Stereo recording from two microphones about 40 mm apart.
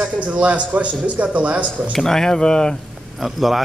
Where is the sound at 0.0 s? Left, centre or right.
Right.